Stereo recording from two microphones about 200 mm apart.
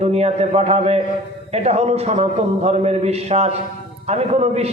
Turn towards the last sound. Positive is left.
turn(degrees=-30)  # may be behind; listen again after turning